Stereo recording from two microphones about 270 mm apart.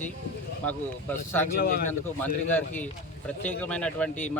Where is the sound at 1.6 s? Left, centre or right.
Left.